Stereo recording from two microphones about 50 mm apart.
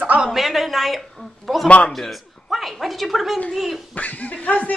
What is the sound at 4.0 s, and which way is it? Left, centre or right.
Chuckle, left.